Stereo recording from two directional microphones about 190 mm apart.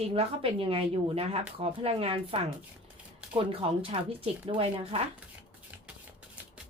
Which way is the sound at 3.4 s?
30° right (ahead or behind).